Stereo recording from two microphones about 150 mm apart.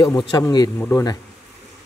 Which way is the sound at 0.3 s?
25° left (ahead or behind).